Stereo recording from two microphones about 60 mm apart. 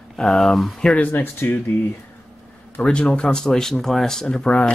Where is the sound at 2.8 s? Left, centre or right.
Centre.